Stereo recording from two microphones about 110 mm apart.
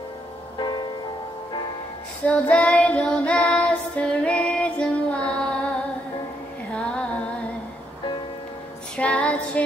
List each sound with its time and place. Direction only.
0.6 s music: 40° left (ahead or behind)
2.2 s child singing: 10° left (ahead or behind)
6.7 s music: 10° left (ahead or behind)
8.9 s music: 10° left (ahead or behind)